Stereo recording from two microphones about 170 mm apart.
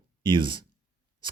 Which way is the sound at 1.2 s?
25° right (ahead or behind).